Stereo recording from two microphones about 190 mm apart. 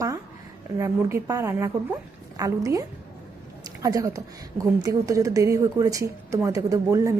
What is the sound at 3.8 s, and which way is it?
A woman's voice, 20° right (ahead or behind).